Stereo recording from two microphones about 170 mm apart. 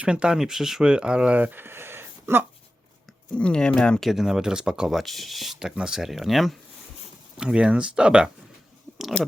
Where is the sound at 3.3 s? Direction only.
5° left (ahead or behind).